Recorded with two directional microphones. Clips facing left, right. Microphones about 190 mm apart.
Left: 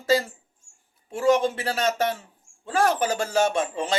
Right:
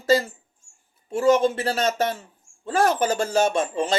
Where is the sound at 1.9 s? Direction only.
15° left (ahead or behind).